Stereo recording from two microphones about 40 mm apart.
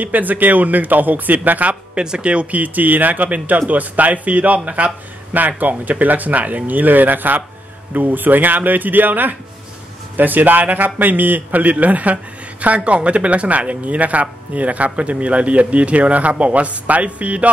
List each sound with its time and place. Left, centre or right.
0.0 s speech: right
1.7 s speech: right
2.6 s a man's voice: right